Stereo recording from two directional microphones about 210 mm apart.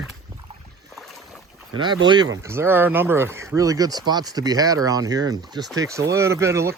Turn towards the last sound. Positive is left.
turn(degrees=-15)  # may be behind; listen again after turning